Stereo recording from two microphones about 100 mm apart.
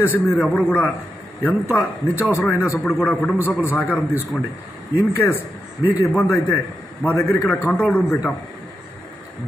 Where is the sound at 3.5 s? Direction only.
20° left (ahead or behind).